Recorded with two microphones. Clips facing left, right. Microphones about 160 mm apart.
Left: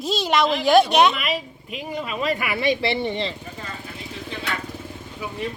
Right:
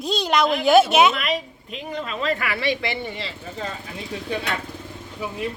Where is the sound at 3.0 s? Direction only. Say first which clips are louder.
Left 6 dB; 35° left (ahead or behind).